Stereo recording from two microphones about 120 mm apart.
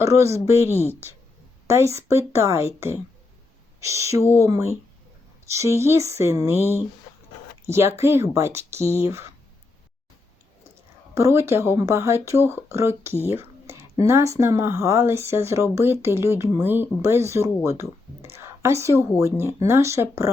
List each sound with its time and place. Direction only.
0.0 s speech: 25° right (ahead or behind)
0.7 s speech: 20° left (ahead or behind)
1.6 s speech: 25° right (ahead or behind)
4.2 s speech: 20° left (ahead or behind)
4.4 s speech: 25° right (ahead or behind)
7.7 s speech: 20° right (ahead or behind)
11.1 s speech: 25° right (ahead or behind)
13.3 s whispering: 20° right (ahead or behind)
14.0 s speech: 25° right (ahead or behind)